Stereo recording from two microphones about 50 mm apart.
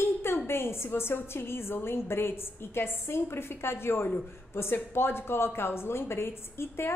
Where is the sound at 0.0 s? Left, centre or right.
Left.